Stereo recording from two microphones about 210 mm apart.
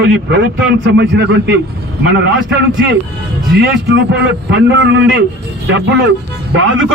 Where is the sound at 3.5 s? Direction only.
55° right (ahead or behind).